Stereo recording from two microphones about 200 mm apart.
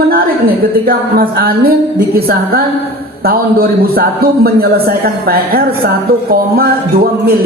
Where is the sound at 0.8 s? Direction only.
45° right (ahead or behind).